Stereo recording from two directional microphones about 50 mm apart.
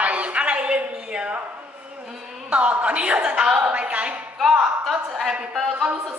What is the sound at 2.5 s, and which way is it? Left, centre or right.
A woman's voice, right.